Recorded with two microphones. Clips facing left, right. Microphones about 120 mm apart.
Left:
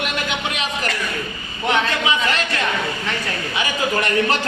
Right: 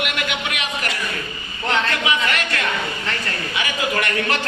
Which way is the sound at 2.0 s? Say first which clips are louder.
Left 1 dB; 30° left (ahead or behind).